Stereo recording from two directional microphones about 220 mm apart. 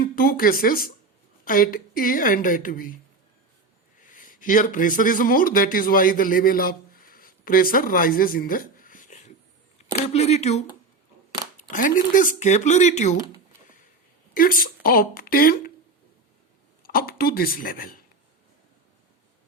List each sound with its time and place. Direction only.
0.0 s a woman's voice: 40° left (ahead or behind)
4.0 s a man's voice: 35° left (ahead or behind)
11.7 s a woman's voice: 35° left (ahead or behind)
16.8 s a woman's voice: 40° left (ahead or behind)